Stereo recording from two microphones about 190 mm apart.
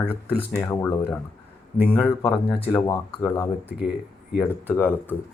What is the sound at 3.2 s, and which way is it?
Speech, 15° left (ahead or behind).